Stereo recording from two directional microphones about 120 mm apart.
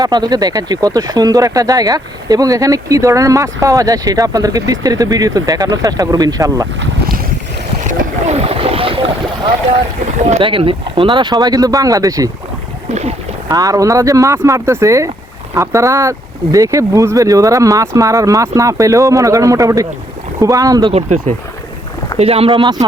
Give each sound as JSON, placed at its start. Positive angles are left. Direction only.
{"t": 0.0, "sound": "speech", "side_deg": -35}
{"t": 7.9, "sound": "vehicle", "side_deg": -60}
{"t": 10.4, "sound": "speech", "side_deg": -45}
{"t": 12.9, "sound": "speech", "side_deg": -65}
{"t": 13.5, "sound": "speech", "side_deg": -30}
{"t": 20.9, "sound": "speech", "side_deg": -70}
{"t": 22.2, "sound": "speech", "side_deg": -55}